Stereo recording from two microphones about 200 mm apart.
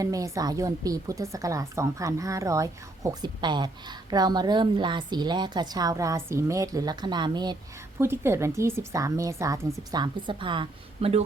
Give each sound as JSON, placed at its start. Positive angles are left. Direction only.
{"t": 0.0, "sound": "a woman's voice", "side_deg": -15}